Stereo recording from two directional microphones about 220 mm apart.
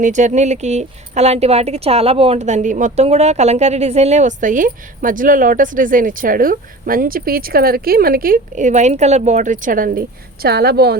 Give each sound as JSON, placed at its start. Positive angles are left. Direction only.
{"t": 0.0, "sound": "a woman's voice", "side_deg": -35}